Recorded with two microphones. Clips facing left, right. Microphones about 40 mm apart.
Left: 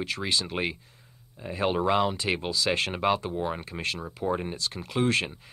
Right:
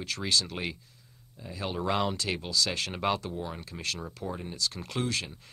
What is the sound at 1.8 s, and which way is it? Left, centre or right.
Speech, centre.